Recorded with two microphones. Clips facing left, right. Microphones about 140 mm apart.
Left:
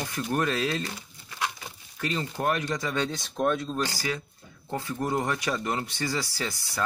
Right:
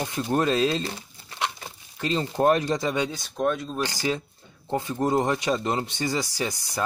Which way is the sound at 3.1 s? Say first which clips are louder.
Right 1 dB; centre (ahead or behind).